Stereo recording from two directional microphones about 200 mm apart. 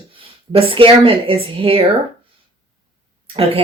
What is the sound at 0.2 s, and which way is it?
Speech, 25° right (ahead or behind).